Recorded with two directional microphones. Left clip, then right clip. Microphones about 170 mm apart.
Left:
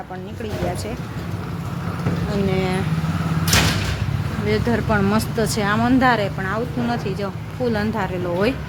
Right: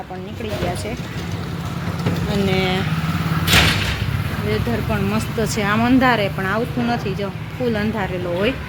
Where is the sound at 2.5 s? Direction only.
5° right (ahead or behind).